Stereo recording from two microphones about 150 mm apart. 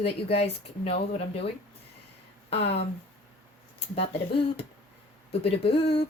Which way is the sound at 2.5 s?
45° left (ahead or behind).